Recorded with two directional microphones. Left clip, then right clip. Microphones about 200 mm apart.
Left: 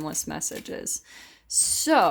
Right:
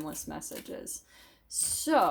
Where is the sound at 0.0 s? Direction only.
50° left (ahead or behind).